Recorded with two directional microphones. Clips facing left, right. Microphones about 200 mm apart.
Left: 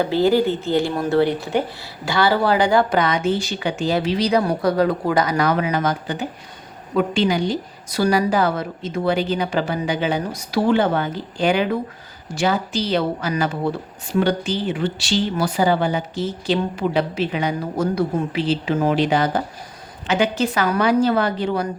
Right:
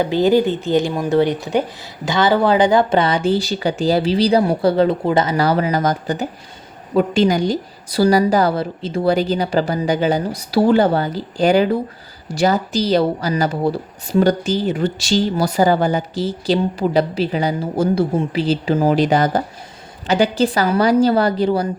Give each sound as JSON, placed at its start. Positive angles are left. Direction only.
{"t": 0.0, "sound": "a woman's voice", "side_deg": -15}